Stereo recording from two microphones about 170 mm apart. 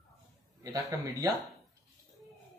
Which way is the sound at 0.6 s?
20° right (ahead or behind).